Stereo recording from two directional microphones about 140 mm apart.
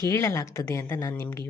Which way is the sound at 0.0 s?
20° left (ahead or behind).